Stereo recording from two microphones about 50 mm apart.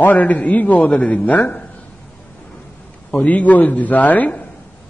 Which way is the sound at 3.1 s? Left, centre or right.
Left.